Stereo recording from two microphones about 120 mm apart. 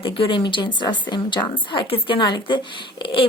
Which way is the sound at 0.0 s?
40° left (ahead or behind).